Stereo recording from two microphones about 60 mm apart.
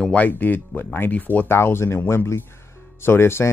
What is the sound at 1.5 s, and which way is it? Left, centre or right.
Speech, left.